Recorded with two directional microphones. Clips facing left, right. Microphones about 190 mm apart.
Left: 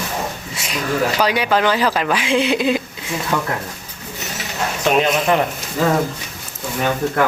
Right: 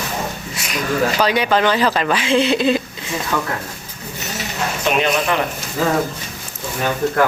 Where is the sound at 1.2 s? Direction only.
10° left (ahead or behind).